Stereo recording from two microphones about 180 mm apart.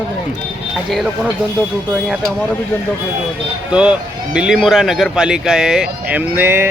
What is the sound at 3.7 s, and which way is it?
Speech, 5° right (ahead or behind).